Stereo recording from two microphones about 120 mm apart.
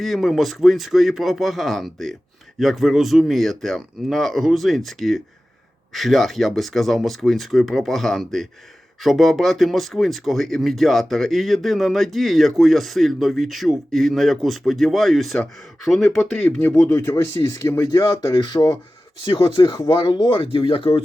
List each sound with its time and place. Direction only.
0.0 s speech: centre (ahead or behind)
17.0 s speech: 20° left (ahead or behind)
18.3 s speech: 40° left (ahead or behind)
19.2 s speech: 45° left (ahead or behind)